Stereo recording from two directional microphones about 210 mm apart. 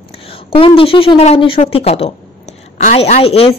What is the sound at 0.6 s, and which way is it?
A woman's voice, 25° left (ahead or behind).